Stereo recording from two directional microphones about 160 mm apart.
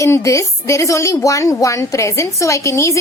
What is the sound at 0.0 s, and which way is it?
A woman's voice, 20° left (ahead or behind).